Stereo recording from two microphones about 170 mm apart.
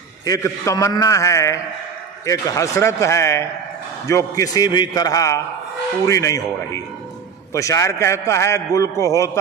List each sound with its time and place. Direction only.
0.2 s a man's voice: 20° left (ahead or behind)